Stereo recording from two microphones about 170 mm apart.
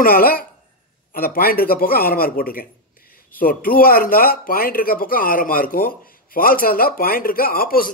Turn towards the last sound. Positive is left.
turn(degrees=60)  # may be behind; listen again after turning